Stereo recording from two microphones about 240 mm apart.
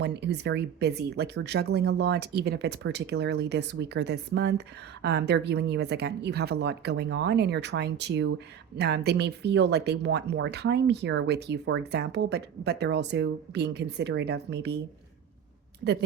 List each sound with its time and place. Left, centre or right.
0.0 s speech: right